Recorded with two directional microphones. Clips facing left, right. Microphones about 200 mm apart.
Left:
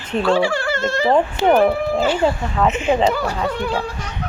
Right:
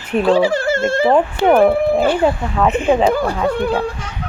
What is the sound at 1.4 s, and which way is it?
Speech, 55° right (ahead or behind).